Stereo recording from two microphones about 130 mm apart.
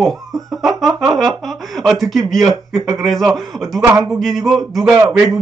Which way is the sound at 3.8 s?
25° right (ahead or behind).